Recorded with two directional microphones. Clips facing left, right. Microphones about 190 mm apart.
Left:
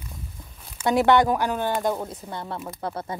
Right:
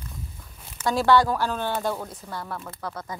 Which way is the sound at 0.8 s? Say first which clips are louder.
Left 2 dB; 20° left (ahead or behind).